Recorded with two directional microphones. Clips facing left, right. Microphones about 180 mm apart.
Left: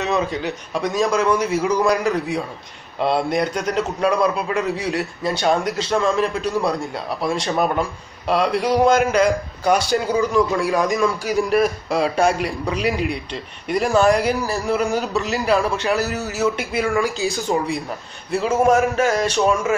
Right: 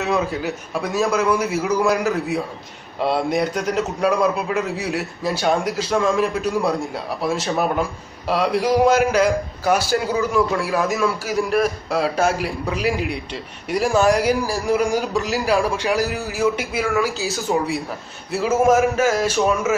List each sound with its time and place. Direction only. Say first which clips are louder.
0.0 s a man's voice: even; 5° right (ahead or behind)